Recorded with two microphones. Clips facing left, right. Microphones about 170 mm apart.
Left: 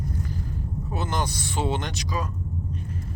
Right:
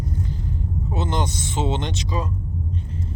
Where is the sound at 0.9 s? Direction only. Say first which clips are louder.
Right 3 dB; 20° right (ahead or behind).